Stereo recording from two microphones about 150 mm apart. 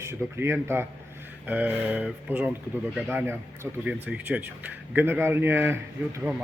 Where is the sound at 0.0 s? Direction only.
15° right (ahead or behind).